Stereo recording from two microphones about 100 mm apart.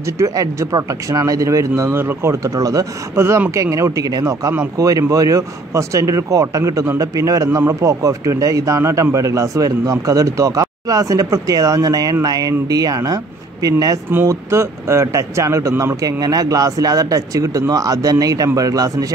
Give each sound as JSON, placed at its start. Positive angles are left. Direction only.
{"t": 0.2, "sound": "a man's voice", "side_deg": -30}